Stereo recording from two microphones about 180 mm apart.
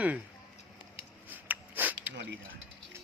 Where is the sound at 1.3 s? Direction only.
10° right (ahead or behind).